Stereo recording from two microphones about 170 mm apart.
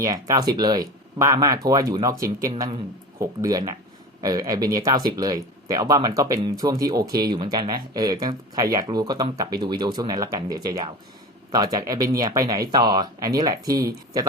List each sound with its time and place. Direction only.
0.0 s speech: 20° right (ahead or behind)